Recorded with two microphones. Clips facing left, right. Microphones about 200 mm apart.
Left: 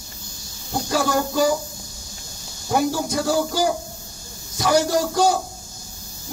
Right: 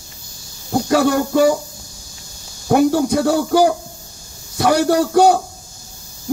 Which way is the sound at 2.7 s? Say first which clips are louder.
Right 8 dB; 65° right (ahead or behind).